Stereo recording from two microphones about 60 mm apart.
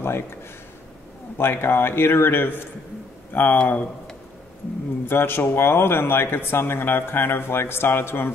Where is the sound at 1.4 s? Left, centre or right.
Left.